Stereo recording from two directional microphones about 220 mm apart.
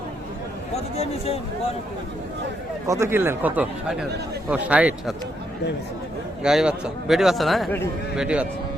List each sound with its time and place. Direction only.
0.9 s speech: 25° left (ahead or behind)
2.8 s a man's voice: 15° right (ahead or behind)
6.4 s a man's voice: 5° right (ahead or behind)